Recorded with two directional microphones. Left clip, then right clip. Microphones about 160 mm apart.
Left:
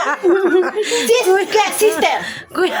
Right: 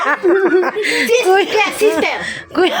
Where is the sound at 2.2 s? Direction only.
15° right (ahead or behind).